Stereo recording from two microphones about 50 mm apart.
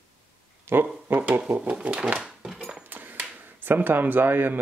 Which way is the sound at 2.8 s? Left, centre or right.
Right.